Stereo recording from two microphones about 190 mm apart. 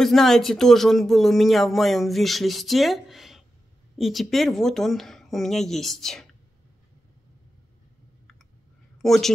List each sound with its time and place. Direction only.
0.0 s speech: centre (ahead or behind)
8.9 s speech: centre (ahead or behind)